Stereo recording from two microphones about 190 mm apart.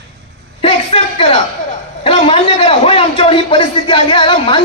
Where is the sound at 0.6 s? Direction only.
30° left (ahead or behind).